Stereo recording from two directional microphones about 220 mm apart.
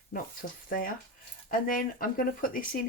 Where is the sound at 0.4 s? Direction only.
40° left (ahead or behind).